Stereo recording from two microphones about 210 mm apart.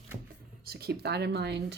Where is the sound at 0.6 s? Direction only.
50° right (ahead or behind).